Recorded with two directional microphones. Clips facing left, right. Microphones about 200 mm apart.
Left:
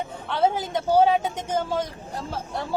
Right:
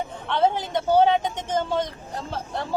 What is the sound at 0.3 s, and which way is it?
A woman's voice, 5° left (ahead or behind).